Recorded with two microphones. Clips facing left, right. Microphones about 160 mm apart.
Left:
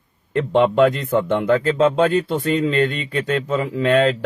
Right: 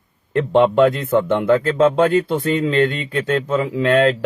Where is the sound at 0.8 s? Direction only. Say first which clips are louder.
Right 2 dB; 50° right (ahead or behind).